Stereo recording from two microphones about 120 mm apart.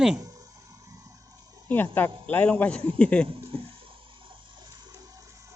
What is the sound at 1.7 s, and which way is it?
Speech, 15° left (ahead or behind).